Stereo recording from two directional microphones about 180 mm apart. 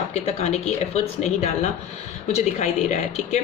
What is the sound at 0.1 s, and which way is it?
A woman's voice, 35° left (ahead or behind).